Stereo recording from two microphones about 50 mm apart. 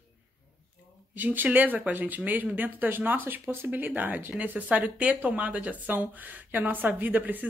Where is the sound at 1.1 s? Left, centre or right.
Right.